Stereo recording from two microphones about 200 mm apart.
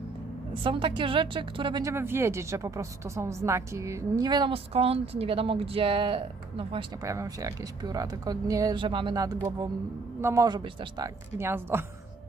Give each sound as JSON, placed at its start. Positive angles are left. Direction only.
{"t": 0.6, "sound": "speech", "side_deg": -25}
{"t": 7.0, "sound": "speech", "side_deg": -15}